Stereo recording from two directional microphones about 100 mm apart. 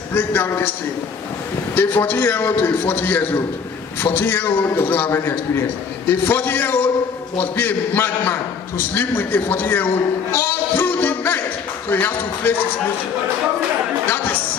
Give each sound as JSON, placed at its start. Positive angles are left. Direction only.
{"t": 0.1, "sound": "a man's voice", "side_deg": 20}
{"t": 1.8, "sound": "a man's voice", "side_deg": 20}
{"t": 10.3, "sound": "a sound", "side_deg": 20}
{"t": 11.9, "sound": "speech", "side_deg": 20}
{"t": 14.1, "sound": "music", "side_deg": 15}